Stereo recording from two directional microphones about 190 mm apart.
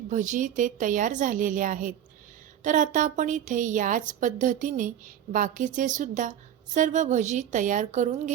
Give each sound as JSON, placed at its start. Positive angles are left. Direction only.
{"t": 0.1, "sound": "a woman's voice", "side_deg": -40}